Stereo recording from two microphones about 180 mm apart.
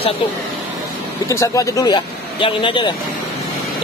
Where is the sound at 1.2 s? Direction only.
20° left (ahead or behind).